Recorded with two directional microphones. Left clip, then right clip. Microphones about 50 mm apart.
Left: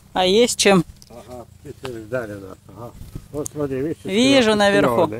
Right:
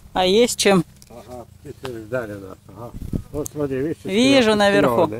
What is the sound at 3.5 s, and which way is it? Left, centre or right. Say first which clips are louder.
Speech: even; right.